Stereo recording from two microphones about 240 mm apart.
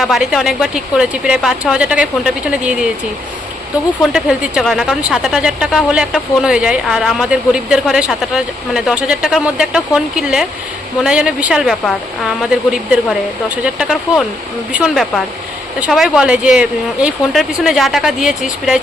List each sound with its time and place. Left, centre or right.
0.0 s speech: centre
4.1 s speech: centre
13.7 s speech: centre